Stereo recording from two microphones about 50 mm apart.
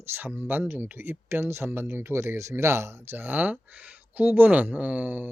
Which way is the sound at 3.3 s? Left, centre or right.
Right.